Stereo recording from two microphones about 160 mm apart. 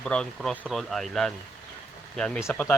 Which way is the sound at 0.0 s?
5° left (ahead or behind).